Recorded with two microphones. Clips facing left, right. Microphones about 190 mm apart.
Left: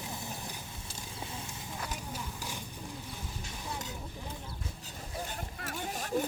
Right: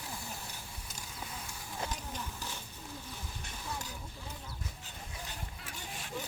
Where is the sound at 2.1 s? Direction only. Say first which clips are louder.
Left 2 dB; 15° left (ahead or behind).